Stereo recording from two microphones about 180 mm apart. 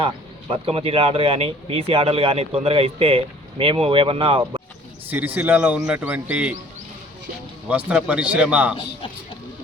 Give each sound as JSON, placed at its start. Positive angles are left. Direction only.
{"t": 0.0, "sound": "speech", "side_deg": -30}
{"t": 5.0, "sound": "speech", "side_deg": -10}
{"t": 7.7, "sound": "speech", "side_deg": -10}